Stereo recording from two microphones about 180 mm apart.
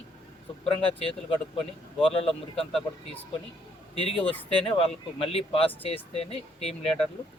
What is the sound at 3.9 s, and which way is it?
A man's voice, 30° left (ahead or behind).